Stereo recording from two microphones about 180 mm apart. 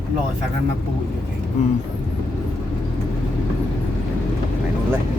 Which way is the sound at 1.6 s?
35° left (ahead or behind).